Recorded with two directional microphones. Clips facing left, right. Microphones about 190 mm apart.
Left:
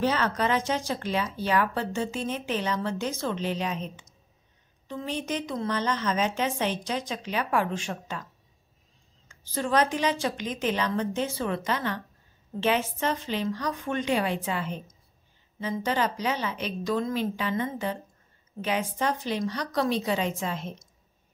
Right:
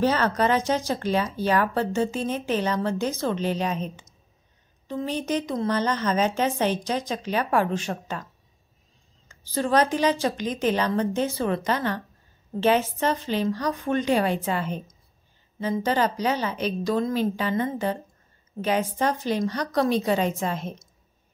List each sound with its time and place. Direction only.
0.0 s speech: 40° right (ahead or behind)
9.5 s a woman's voice: 35° right (ahead or behind)